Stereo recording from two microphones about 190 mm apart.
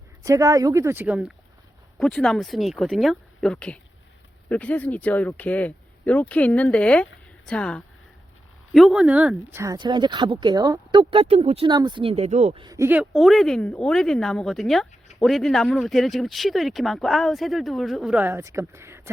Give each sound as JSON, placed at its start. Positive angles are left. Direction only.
{"t": 0.3, "sound": "speech", "side_deg": -15}
{"t": 12.6, "sound": "speech", "side_deg": -15}